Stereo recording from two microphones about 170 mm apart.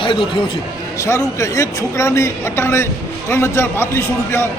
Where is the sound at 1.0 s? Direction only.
15° left (ahead or behind).